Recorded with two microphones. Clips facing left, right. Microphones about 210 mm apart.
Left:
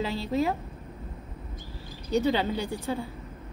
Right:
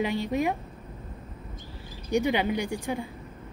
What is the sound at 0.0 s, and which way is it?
Speech, 15° right (ahead or behind).